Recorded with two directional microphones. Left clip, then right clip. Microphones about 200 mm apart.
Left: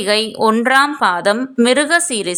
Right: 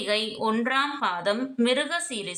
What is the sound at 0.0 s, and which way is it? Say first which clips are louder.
Speech: left 11 dB; 40° left (ahead or behind).